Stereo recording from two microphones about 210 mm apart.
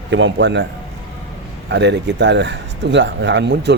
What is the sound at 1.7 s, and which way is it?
Speech, 55° right (ahead or behind).